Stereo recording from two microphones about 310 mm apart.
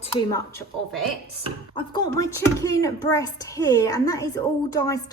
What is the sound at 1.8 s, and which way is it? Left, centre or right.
Speech, centre.